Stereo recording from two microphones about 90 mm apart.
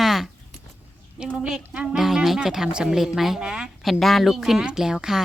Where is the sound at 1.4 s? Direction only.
10° right (ahead or behind).